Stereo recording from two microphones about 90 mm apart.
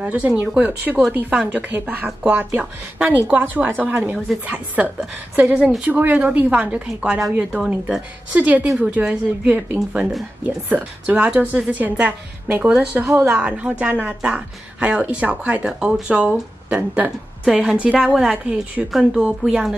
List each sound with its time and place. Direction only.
0.0 s a woman's voice: 15° right (ahead or behind)
13.4 s a woman's voice: 15° right (ahead or behind)
18.9 s a woman's voice: centre (ahead or behind)